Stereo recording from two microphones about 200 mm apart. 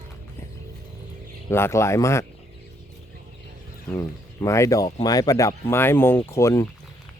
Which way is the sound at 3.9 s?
15° left (ahead or behind).